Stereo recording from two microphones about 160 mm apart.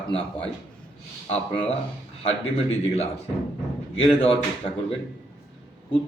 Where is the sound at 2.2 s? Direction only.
40° left (ahead or behind).